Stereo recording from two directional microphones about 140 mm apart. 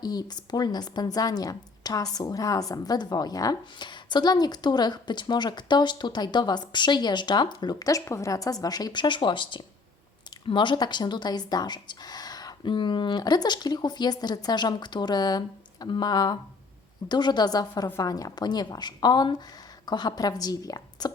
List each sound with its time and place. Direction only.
0.0 s a woman's voice: 30° left (ahead or behind)